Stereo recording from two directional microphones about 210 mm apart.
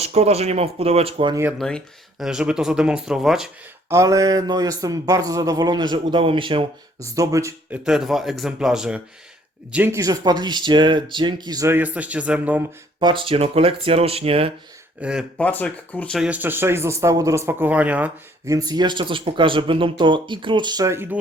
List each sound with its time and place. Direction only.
0.0 s speech: 30° right (ahead or behind)
1.5 s speech: centre (ahead or behind)
3.9 s speech: 15° right (ahead or behind)
7.9 s speech: centre (ahead or behind)
13.0 s speech: 20° right (ahead or behind)
15.0 s speech: 5° right (ahead or behind)
15.4 s speech: 5° left (ahead or behind)
16.2 s speech: 10° right (ahead or behind)